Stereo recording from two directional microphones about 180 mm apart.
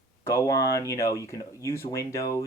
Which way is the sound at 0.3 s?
15° left (ahead or behind).